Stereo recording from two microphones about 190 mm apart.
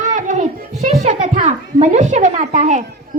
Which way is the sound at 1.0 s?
40° right (ahead or behind).